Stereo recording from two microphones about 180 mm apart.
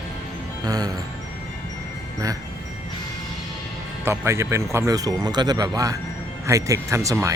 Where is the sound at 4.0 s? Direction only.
15° right (ahead or behind).